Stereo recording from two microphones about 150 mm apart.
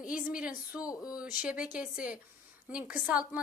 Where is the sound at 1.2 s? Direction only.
5° right (ahead or behind).